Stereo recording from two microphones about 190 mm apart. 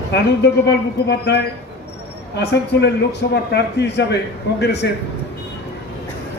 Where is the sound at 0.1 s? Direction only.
60° left (ahead or behind).